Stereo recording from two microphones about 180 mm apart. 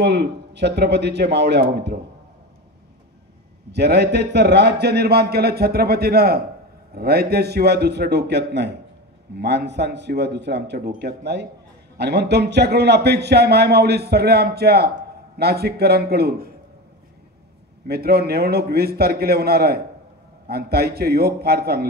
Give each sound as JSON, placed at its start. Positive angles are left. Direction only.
{"t": 0.0, "sound": "speech", "side_deg": -65}
{"t": 3.7, "sound": "a man's voice", "side_deg": -65}
{"t": 17.8, "sound": "a man's voice", "side_deg": -60}